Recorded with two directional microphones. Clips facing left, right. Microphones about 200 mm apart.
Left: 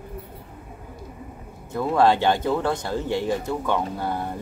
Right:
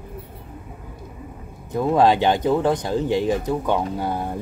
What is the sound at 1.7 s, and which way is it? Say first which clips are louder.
Speech: right 2 dB; 15° right (ahead or behind).